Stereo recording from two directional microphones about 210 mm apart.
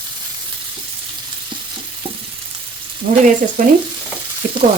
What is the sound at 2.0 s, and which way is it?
Frying, 25° right (ahead or behind).